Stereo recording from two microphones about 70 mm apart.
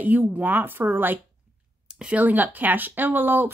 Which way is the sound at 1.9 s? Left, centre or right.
Centre.